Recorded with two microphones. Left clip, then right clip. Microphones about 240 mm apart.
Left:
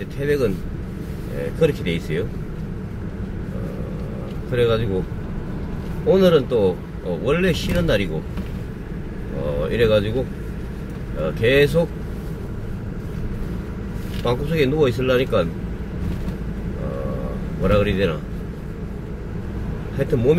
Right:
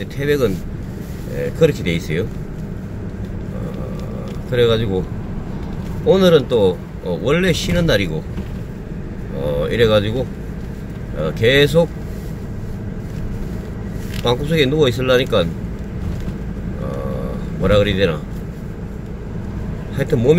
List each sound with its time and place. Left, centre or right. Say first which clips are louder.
0.2 s speech: right 3 dB; right
1.6 s speech: right 4 dB; right
4.5 s speech: right 4 dB; right
6.0 s speech: right 3 dB; centre
9.6 s speech: right 3 dB; right
11.3 s speech: right 3 dB; centre
14.2 s speech: right 4 dB; centre
17.6 s speech: right 4 dB; centre
20.0 s speech: right 3 dB; centre